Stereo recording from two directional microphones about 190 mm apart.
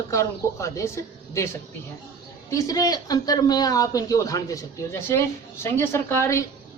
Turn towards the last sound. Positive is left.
turn(degrees=15)  # may be behind; listen again after turning